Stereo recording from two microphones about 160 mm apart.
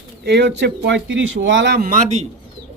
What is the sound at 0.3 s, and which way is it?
Speech, 90° right.